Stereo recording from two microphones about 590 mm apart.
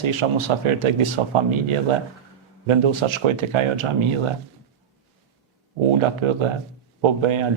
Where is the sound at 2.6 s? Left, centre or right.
Right.